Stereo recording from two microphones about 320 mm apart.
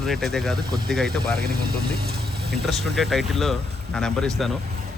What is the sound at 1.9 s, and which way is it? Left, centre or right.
Vehicle, right.